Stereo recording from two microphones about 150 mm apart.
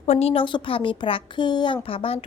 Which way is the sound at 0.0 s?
45° left (ahead or behind).